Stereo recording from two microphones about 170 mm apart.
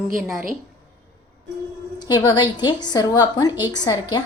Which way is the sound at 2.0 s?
25° left (ahead or behind).